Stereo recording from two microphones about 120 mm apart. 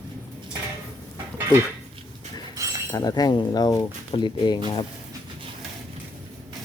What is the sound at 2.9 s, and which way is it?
Speech, 30° left (ahead or behind).